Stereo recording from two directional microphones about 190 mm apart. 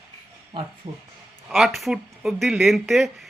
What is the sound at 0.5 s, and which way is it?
Speech, 25° right (ahead or behind).